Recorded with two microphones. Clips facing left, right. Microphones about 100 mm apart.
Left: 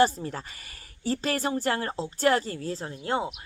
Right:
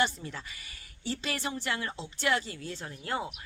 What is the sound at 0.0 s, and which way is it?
A woman's voice, 40° left (ahead or behind).